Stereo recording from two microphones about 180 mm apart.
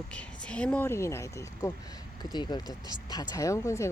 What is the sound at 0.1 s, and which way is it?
Speech, 5° left (ahead or behind).